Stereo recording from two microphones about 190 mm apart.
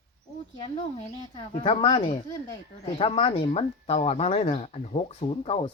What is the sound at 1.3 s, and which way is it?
Speech, 30° left (ahead or behind).